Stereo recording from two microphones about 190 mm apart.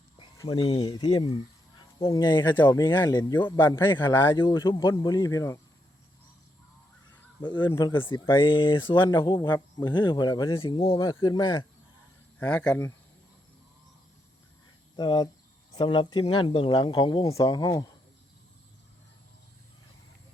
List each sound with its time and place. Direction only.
0.3 s speech: 25° left (ahead or behind)
7.4 s speech: 25° left (ahead or behind)
12.4 s speech: 5° left (ahead or behind)
14.9 s speech: 25° left (ahead or behind)